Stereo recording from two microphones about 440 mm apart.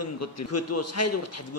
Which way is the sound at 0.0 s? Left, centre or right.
Left.